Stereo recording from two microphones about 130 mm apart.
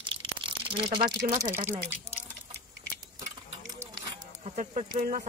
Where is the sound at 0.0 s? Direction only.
40° right (ahead or behind).